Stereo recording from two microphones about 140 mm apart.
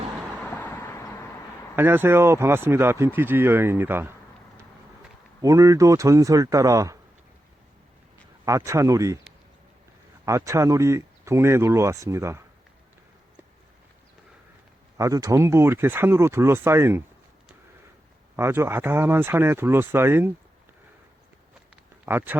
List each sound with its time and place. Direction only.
0.3 s vehicle: 10° left (ahead or behind)
1.7 s speech: 15° right (ahead or behind)
5.4 s speech: 25° right (ahead or behind)
8.4 s speech: 20° right (ahead or behind)
10.2 s speech: 20° right (ahead or behind)
14.9 s speech: 25° right (ahead or behind)
18.3 s speech: 20° right (ahead or behind)
22.0 s speech: 15° right (ahead or behind)